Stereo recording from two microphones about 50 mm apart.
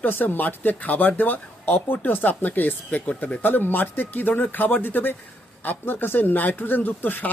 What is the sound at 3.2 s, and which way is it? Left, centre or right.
Speech, left.